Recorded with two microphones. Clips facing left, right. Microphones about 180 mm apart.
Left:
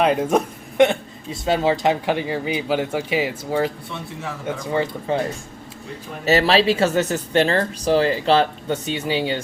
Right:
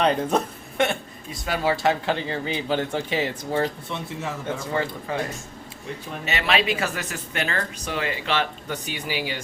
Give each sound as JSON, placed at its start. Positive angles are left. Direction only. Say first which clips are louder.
{"t": 0.0, "sound": "speech", "louder": "left 3 dB", "side_deg": 10}
{"t": 4.7, "sound": "speech", "louder": "left 6 dB", "side_deg": 20}
{"t": 6.2, "sound": "speech", "louder": "left 8 dB", "side_deg": 35}